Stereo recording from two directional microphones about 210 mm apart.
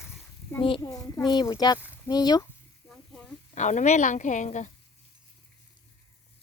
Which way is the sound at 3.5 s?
35° left (ahead or behind).